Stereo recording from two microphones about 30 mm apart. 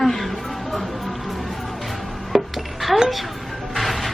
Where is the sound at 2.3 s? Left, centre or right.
Centre.